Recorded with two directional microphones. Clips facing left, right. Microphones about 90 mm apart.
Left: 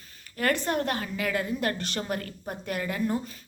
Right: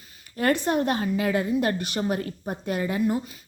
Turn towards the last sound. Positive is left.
turn(degrees=-10)  # may be behind; listen again after turning